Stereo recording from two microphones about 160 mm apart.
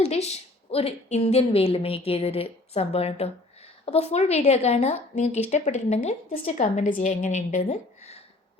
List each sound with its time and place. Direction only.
0.0 s a woman's voice: 40° left (ahead or behind)